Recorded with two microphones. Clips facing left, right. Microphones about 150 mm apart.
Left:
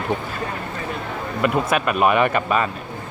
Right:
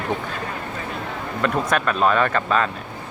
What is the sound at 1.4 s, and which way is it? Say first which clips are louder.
Speech: left 2 dB; 10° left (ahead or behind).